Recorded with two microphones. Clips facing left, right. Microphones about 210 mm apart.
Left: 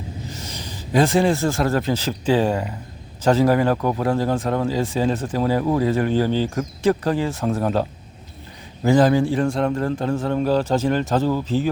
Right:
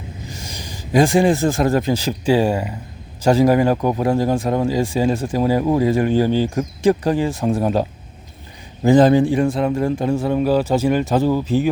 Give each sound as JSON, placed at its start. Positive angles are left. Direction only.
{"t": 0.3, "sound": "a man's voice", "side_deg": -10}
{"t": 9.5, "sound": "speech", "side_deg": -5}